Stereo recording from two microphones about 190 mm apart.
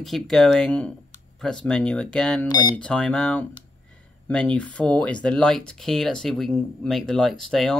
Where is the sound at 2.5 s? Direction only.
20° left (ahead or behind).